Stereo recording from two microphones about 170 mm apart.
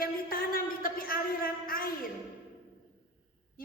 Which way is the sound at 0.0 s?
60° left (ahead or behind).